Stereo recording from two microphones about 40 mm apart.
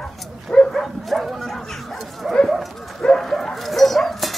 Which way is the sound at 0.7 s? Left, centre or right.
Centre.